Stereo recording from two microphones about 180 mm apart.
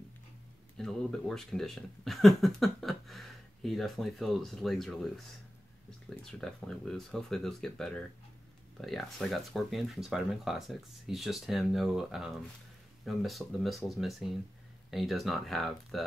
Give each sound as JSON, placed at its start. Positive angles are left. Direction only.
{"t": 0.7, "sound": "speech", "side_deg": 5}
{"t": 6.4, "sound": "speech", "side_deg": 0}